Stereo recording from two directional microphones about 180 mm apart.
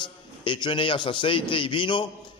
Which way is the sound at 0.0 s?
25° left (ahead or behind).